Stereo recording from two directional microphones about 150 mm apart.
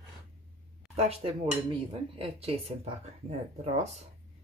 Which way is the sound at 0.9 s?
45° right (ahead or behind).